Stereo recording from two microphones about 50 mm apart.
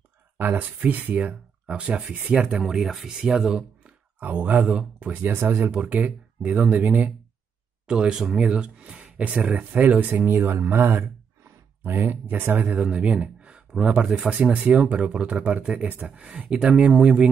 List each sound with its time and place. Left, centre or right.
0.4 s speech: right; by 2.0 s centre
2.3 s speech: right
2.6 s speech: centre
4.2 s speech: right
5.1 s speech: right
5.7 s speech: right
7.8 s speech: centre
9.1 s speech: right
11.8 s speech: right
12.8 s speech: right